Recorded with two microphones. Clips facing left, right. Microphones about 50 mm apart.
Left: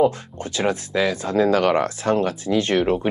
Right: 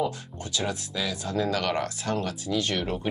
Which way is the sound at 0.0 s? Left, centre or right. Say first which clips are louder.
Left 10 dB; left.